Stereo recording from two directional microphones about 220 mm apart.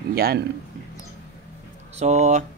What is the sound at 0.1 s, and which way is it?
Speech, 45° right (ahead or behind).